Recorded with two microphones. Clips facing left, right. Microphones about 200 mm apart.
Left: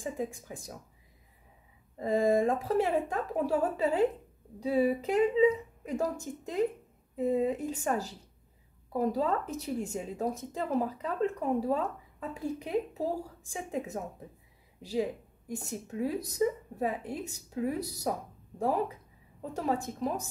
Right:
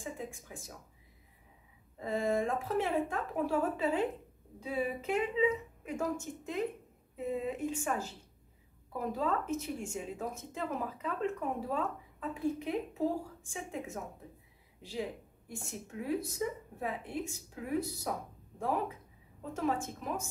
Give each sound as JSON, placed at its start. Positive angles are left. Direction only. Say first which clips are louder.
{"t": 0.0, "sound": "speech", "louder": "left 7 dB", "side_deg": 40}
{"t": 2.0, "sound": "speech", "louder": "left 6 dB", "side_deg": 35}
{"t": 19.5, "sound": "speech", "louder": "left 2 dB", "side_deg": 35}